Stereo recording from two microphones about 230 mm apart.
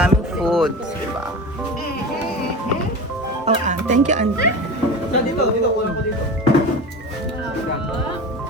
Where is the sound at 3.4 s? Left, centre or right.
Right.